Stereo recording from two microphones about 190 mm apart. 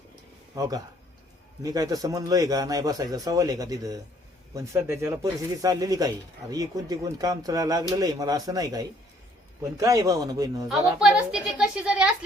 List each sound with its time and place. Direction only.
1.6 s speech: 20° right (ahead or behind)
10.7 s speech: centre (ahead or behind)